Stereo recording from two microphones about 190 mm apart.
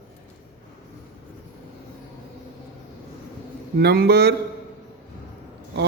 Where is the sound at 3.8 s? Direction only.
55° right (ahead or behind).